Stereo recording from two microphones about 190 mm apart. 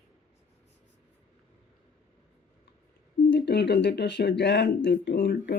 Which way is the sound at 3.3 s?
60° left (ahead or behind).